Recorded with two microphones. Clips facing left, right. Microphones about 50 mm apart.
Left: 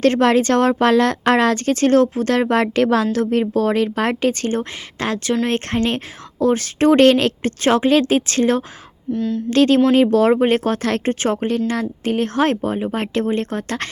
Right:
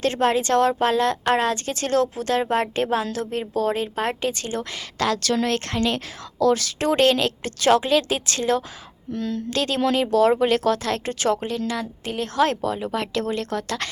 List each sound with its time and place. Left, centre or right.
0.0 s speech: left
4.9 s a woman's voice: left
9.1 s speech: centre
9.5 s a woman's voice: left
10.3 s a woman's voice: left